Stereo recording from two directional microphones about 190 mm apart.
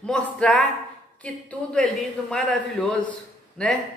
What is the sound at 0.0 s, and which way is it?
Speech, 5° left (ahead or behind).